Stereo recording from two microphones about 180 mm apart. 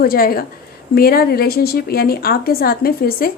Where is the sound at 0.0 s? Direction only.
55° left (ahead or behind).